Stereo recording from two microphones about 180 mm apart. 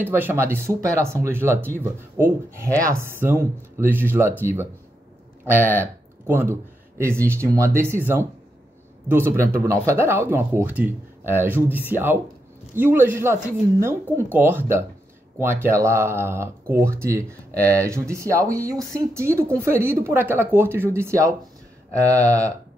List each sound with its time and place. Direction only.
0.0 s speech: 10° right (ahead or behind)